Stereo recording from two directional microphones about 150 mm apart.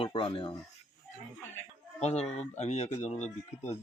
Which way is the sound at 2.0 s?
45° left (ahead or behind).